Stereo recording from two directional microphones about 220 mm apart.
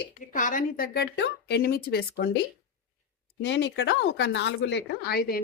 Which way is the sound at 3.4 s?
55° left (ahead or behind).